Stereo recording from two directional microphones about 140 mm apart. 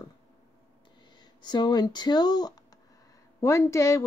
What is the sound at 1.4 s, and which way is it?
Speech, 30° left (ahead or behind).